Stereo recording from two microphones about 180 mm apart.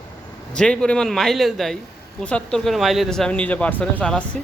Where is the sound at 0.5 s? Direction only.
5° left (ahead or behind).